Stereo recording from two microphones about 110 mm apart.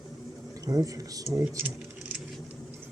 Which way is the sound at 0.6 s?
30° right (ahead or behind).